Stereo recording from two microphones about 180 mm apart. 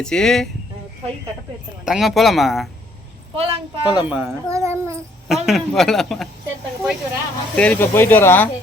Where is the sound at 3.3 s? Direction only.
35° right (ahead or behind).